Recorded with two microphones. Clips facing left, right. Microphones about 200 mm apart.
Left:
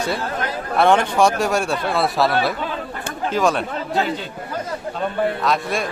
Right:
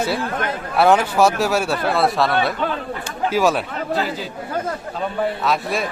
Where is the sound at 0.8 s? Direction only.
5° right (ahead or behind).